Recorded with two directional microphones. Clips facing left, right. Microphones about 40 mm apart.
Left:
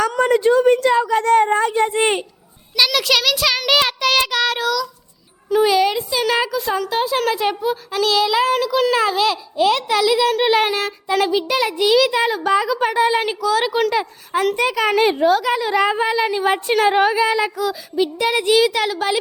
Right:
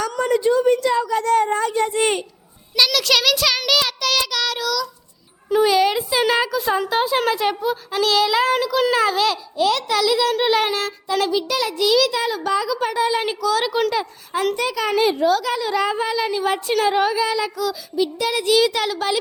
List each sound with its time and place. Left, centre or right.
0.2 s a woman's voice: left
2.9 s a child's voice: centre
3.7 s a woman's voice: left
5.5 s a child's voice: centre
11.3 s a child's voice: left
13.4 s a child's voice: centre
14.5 s a child's voice: left
18.5 s a child's voice: centre